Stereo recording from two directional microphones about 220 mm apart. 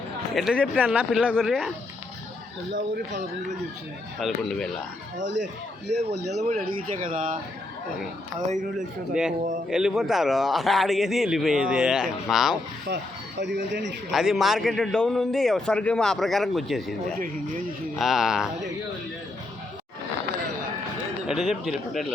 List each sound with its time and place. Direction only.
0.3 s a man's voice: 5° right (ahead or behind)
4.2 s a man's voice: centre (ahead or behind)
6.2 s speech: 35° right (ahead or behind)
9.1 s a man's voice: 5° right (ahead or behind)
12.9 s speech: 50° right (ahead or behind)
14.1 s a man's voice: centre (ahead or behind)
17.9 s a man's voice: centre (ahead or behind)
21.2 s a man's voice: centre (ahead or behind)